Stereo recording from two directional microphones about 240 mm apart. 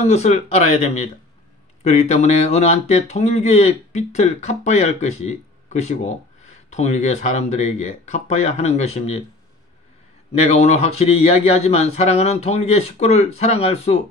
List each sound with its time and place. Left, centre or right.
0.0 s speech: left
10.3 s speech: left